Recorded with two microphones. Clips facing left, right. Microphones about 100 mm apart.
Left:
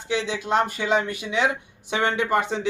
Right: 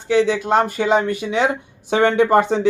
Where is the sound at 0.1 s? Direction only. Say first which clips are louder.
Right 8 dB; 45° right (ahead or behind).